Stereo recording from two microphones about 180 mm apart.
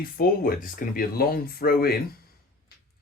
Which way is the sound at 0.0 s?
55° left (ahead or behind).